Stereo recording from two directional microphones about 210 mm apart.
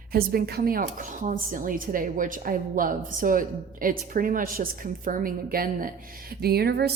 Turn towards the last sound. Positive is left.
turn(degrees=-50)  # may be behind; listen again after turning